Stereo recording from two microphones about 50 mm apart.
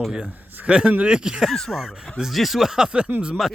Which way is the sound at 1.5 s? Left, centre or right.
Centre.